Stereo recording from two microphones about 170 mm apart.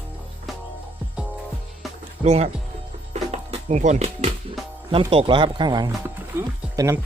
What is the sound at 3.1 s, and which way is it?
Music, 40° right (ahead or behind).